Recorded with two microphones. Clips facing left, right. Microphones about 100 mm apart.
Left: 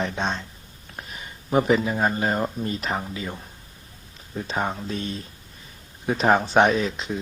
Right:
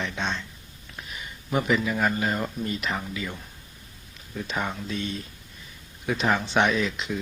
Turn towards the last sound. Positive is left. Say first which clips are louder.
# left 3 dB
turn(degrees=35)  # may be behind; listen again after turning